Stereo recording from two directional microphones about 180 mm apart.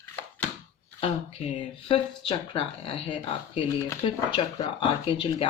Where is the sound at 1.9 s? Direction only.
30° left (ahead or behind).